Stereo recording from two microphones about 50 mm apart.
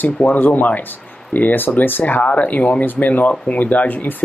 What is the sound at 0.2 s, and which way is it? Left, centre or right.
Speech, left.